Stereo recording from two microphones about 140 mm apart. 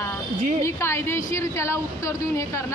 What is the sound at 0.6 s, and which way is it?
Speech, 20° left (ahead or behind).